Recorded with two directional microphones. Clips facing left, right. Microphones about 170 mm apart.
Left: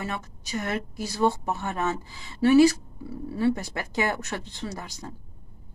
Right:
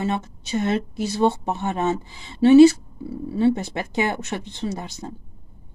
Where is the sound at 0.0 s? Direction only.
25° right (ahead or behind).